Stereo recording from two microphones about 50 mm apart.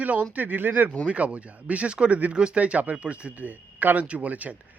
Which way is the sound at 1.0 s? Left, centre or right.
Right.